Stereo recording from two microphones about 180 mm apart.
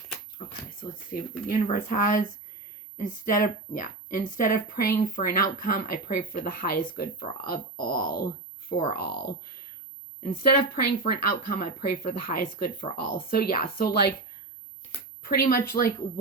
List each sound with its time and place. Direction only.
0.4 s a sound: 40° left (ahead or behind)
1.1 s speech: 55° left (ahead or behind)
10.4 s speech: 55° left (ahead or behind)
15.2 s speech: 55° left (ahead or behind)